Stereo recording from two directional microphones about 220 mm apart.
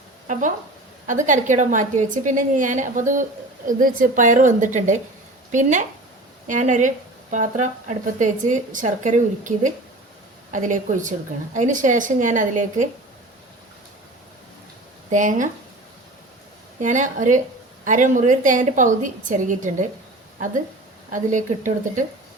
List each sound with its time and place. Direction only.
1.0 s a woman's voice: 35° right (ahead or behind)
15.1 s a woman's voice: 35° right (ahead or behind)
16.8 s a woman's voice: 35° right (ahead or behind)
21.1 s a woman's voice: 35° right (ahead or behind)